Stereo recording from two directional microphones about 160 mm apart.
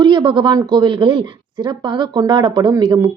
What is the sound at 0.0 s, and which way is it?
Speech, 30° right (ahead or behind).